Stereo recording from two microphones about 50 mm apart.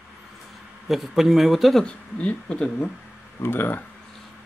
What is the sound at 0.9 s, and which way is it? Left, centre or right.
Speech, centre.